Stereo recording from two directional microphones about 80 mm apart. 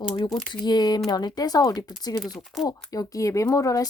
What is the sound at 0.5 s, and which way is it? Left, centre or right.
Speech, left.